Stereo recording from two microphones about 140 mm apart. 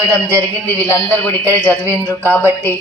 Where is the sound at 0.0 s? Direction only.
15° left (ahead or behind).